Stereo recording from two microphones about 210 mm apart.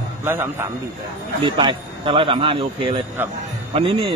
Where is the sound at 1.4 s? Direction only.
25° right (ahead or behind).